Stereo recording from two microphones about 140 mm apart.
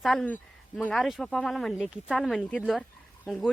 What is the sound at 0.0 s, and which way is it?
Speech, centre (ahead or behind).